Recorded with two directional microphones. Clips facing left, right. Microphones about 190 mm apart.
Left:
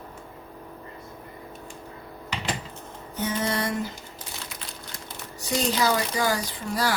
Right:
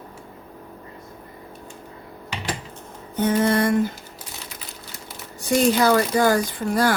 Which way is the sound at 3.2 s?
55° right (ahead or behind).